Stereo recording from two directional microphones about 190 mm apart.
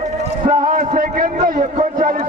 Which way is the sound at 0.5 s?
45° right (ahead or behind).